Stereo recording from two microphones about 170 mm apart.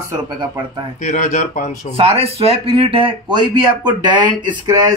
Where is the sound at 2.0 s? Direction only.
35° right (ahead or behind).